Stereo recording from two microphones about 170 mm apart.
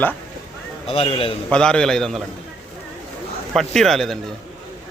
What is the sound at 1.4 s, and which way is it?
Speech, 5° left (ahead or behind).